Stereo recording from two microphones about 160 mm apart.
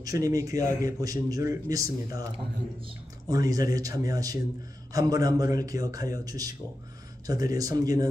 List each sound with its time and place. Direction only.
0.0 s a man's voice: 20° right (ahead or behind)
3.3 s a man's voice: 20° right (ahead or behind)